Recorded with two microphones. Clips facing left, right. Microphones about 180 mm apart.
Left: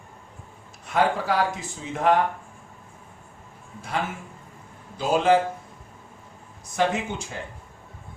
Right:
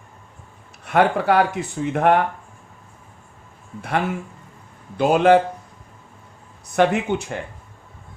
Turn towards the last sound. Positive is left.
turn(degrees=-60)  # may be behind; listen again after turning